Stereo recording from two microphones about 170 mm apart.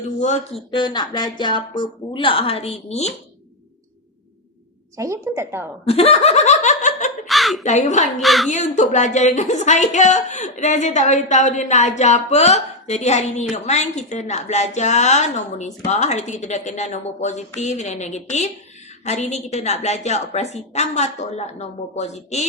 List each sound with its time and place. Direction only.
0.2 s a woman's voice: 45° left (ahead or behind)
0.7 s speech: 25° left (ahead or behind)
4.9 s a woman's voice: 15° right (ahead or behind)
5.8 s speech: 35° left (ahead or behind)
7.3 s a sound: centre (ahead or behind)
7.6 s a woman's voice: 45° left (ahead or behind)
8.2 s a woman's voice: centre (ahead or behind)
8.4 s a woman's voice: 45° left (ahead or behind)